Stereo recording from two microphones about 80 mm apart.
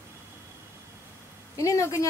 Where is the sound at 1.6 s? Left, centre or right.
Left.